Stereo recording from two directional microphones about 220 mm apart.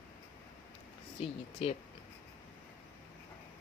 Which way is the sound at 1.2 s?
25° left (ahead or behind).